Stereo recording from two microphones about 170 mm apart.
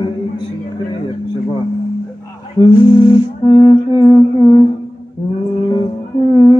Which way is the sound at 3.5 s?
25° left (ahead or behind).